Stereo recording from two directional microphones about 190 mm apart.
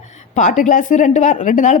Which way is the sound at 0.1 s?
40° left (ahead or behind).